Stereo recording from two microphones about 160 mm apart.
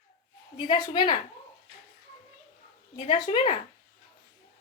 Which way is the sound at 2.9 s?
35° left (ahead or behind).